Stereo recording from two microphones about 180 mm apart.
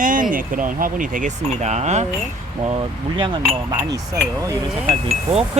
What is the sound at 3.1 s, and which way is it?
Speech, 25° right (ahead or behind).